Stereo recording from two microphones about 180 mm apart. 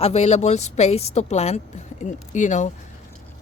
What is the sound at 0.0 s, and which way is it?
A woman's voice, 35° left (ahead or behind).